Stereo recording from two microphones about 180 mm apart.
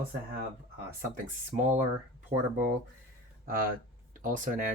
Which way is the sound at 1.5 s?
40° right (ahead or behind).